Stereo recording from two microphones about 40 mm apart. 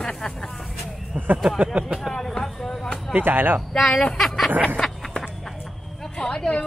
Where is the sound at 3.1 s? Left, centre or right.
Right.